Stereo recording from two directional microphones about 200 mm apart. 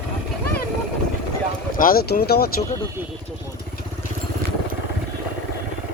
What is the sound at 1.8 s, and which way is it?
Speech, 45° left (ahead or behind).